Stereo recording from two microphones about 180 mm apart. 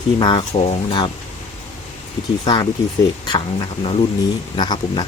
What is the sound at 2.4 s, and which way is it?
Speech, 25° left (ahead or behind).